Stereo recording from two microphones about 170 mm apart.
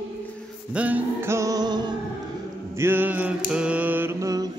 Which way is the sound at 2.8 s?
10° right (ahead or behind).